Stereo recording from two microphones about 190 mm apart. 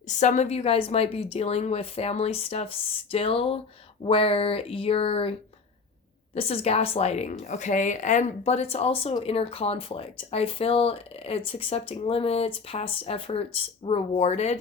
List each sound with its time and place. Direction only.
0.2 s speech: 40° left (ahead or behind)
6.3 s speech: 30° left (ahead or behind)